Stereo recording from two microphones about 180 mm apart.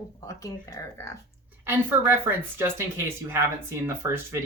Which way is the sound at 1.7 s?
10° right (ahead or behind).